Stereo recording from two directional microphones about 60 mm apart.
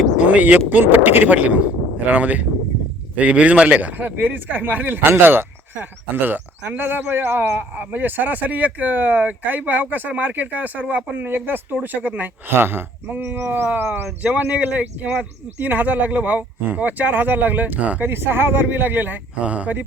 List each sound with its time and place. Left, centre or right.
0.2 s vehicle: right
0.7 s speech: right
12.5 s speech: right
18.0 s speech: right
19.4 s speech: right